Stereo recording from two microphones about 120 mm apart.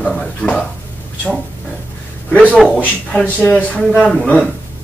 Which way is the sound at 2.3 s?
5° left (ahead or behind).